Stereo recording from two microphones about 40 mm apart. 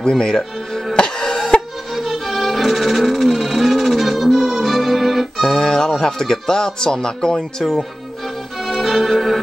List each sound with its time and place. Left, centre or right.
0.1 s speech: centre
0.9 s cough: centre
2.0 s music: centre
4.6 s organ: centre
5.5 s speech: centre
8.6 s music: centre